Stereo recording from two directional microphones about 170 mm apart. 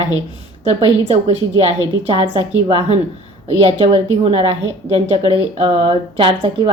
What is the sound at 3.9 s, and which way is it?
A woman's voice, 35° right (ahead or behind).